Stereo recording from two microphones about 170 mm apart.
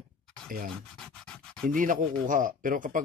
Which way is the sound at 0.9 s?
5° left (ahead or behind).